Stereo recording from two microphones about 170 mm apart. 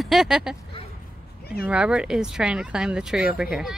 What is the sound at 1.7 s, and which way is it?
Speech, 5° right (ahead or behind).